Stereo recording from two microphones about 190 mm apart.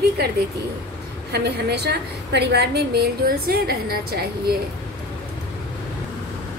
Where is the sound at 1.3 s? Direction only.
60° right (ahead or behind).